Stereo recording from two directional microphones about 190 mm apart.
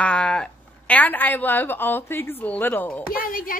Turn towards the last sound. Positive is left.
turn(degrees=50)  # may be behind; listen again after turning